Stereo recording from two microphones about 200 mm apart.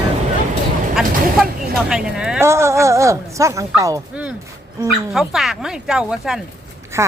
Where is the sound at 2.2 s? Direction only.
5° right (ahead or behind).